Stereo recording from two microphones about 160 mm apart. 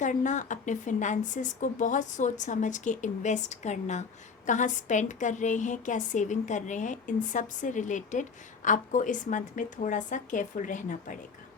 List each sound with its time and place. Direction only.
0.0 s a woman's voice: 50° left (ahead or behind)